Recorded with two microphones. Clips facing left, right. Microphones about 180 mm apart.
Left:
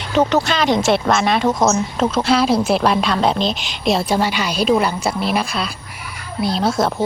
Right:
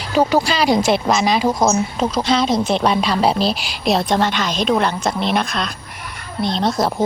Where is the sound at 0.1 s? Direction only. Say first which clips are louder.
Even; centre (ahead or behind).